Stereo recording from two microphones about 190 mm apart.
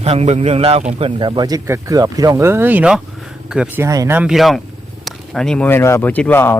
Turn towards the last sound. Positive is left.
turn(degrees=10)  # may be behind; listen again after turning